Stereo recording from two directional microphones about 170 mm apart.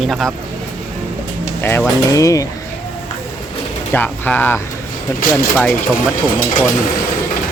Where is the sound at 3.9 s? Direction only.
10° left (ahead or behind).